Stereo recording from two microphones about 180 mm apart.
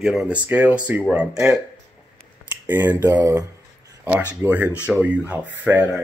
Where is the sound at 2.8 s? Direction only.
20° right (ahead or behind).